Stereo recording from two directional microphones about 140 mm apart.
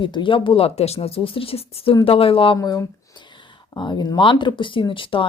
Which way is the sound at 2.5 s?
25° left (ahead or behind).